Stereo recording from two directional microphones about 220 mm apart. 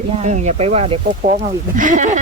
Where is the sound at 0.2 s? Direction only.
30° right (ahead or behind).